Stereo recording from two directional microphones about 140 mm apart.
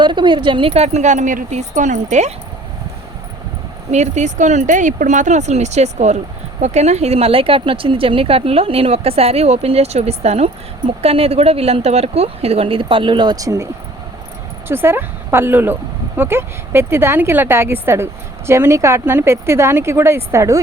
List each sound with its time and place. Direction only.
0.0 s speech: 35° right (ahead or behind); by 2.3 s 60° right (ahead or behind)
3.9 s speech: 55° right (ahead or behind); by 13.7 s 25° right (ahead or behind)
14.7 s speech: 15° right (ahead or behind)